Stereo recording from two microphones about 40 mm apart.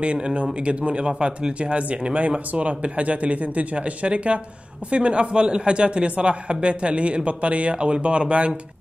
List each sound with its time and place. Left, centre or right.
0.0 s a man's voice: right